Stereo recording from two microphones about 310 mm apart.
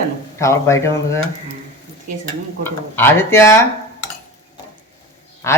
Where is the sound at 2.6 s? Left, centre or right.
Centre.